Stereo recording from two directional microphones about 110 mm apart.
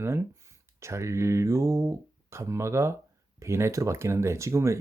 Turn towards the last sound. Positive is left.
turn(degrees=-25)  # may be behind; listen again after turning